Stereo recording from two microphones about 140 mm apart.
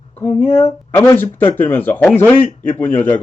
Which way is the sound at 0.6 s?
15° left (ahead or behind).